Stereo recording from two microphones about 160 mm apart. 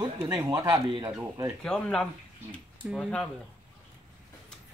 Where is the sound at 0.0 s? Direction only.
25° right (ahead or behind).